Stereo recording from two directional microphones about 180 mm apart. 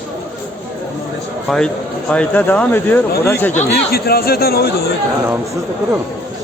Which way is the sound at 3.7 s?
60° left (ahead or behind).